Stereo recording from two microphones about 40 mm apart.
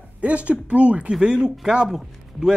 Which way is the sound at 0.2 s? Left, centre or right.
Right.